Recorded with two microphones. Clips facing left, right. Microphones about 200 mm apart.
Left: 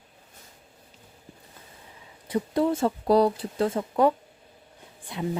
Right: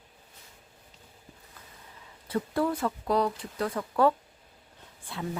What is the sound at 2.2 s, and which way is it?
Speech, 15° left (ahead or behind).